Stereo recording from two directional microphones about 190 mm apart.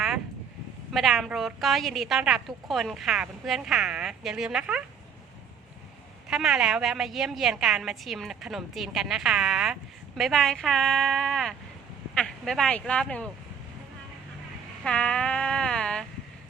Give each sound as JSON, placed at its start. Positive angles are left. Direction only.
{"t": 0.9, "sound": "a woman's voice", "side_deg": 0}
{"t": 6.2, "sound": "a woman's voice", "side_deg": 0}
{"t": 14.8, "sound": "a sound", "side_deg": 5}